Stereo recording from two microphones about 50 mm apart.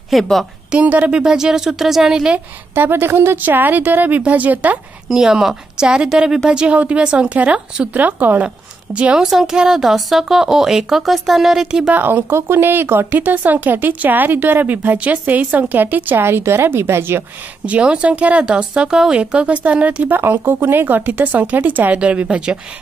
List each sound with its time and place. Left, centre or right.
0.1 s a woman's voice: centre
0.7 s a woman's voice: right
1.2 s a woman's voice: centre
2.7 s a woman's voice: right
3.4 s speech: right
5.1 s a woman's voice: centre
8.0 s speech: right
9.1 s a woman's voice: centre
11.9 s speech: right
16.2 s a woman's voice: right
17.6 s a woman's voice: right
20.2 s a woman's voice: right